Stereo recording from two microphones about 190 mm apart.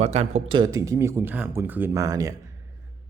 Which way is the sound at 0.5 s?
20° right (ahead or behind).